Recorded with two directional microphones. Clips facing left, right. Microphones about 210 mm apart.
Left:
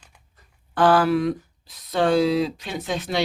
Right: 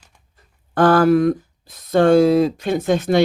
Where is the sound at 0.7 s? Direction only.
45° right (ahead or behind).